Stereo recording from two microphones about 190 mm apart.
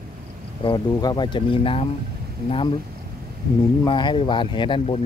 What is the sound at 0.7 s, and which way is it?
Speech, 20° left (ahead or behind).